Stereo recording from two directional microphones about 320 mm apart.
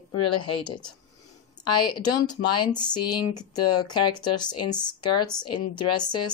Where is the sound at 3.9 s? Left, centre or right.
Centre.